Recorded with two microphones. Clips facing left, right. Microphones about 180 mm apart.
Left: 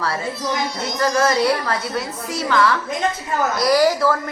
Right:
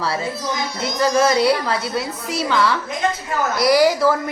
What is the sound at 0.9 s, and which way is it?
A woman's voice, 15° right (ahead or behind).